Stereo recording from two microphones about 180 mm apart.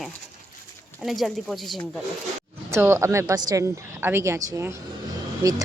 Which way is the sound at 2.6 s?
15° right (ahead or behind).